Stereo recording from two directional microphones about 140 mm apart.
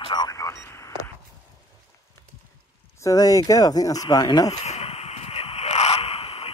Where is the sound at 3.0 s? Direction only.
25° left (ahead or behind).